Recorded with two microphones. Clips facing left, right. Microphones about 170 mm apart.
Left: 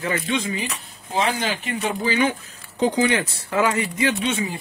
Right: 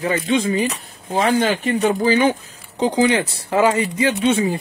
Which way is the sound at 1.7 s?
40° right (ahead or behind).